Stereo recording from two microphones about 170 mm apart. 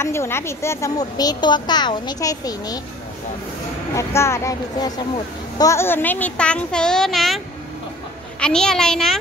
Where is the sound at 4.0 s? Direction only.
15° left (ahead or behind).